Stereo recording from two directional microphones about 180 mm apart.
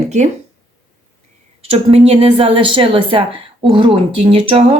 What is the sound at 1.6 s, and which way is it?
A woman's voice, 30° right (ahead or behind).